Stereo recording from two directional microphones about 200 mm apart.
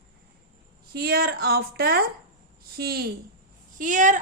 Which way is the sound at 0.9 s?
50° right (ahead or behind).